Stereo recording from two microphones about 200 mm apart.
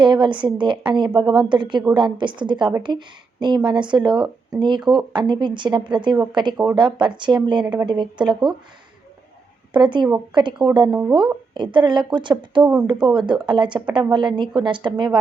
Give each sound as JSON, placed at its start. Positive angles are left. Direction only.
{"t": 0.0, "sound": "a woman's voice", "side_deg": -25}
{"t": 9.7, "sound": "a woman's voice", "side_deg": -25}